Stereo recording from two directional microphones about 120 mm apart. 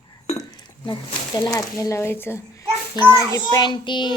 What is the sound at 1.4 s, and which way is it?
A child's voice, 30° left (ahead or behind).